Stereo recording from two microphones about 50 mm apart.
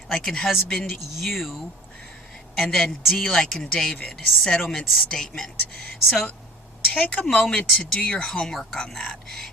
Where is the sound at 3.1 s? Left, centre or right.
Centre.